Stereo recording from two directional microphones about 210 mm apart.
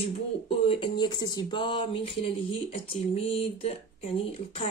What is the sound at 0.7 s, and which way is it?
Speech, 20° left (ahead or behind).